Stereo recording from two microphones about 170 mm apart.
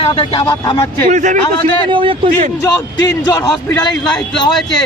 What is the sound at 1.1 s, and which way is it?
Speech, 45° right (ahead or behind).